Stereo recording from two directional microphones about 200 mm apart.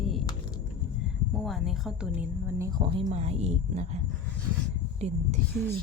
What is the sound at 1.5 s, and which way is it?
A woman's voice, centre (ahead or behind).